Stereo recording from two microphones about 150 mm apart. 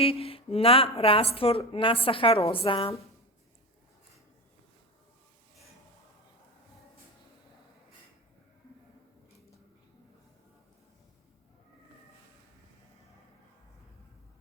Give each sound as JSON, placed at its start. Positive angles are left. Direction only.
{"t": 0.0, "sound": "speech", "side_deg": 40}